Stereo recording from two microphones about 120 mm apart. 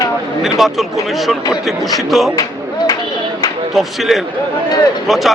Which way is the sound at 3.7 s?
Centre (ahead or behind).